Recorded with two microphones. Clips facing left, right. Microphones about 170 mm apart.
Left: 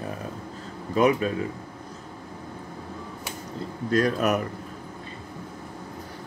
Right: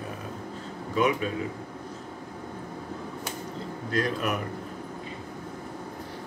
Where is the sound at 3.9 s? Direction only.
45° left (ahead or behind).